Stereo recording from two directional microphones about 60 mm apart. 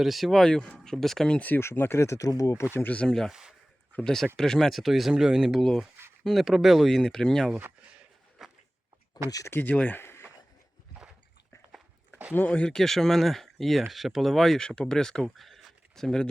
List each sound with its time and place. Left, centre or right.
0.0 s speech: centre
1.5 s speech: left
2.0 s speech: left
2.4 s speech: left
3.1 s speech: centre
9.2 s speech: left
9.5 s speech: left
9.7 s speech: left
10.0 s a sound: left
12.5 s speech: centre
15.4 s a sound: centre